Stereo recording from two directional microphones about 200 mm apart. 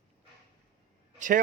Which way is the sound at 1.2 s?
40° right (ahead or behind).